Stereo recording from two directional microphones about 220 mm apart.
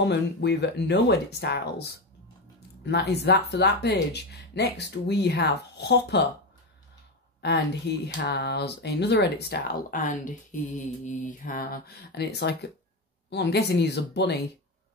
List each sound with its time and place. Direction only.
0.0 s speech: 50° left (ahead or behind)
7.4 s speech: 50° left (ahead or behind)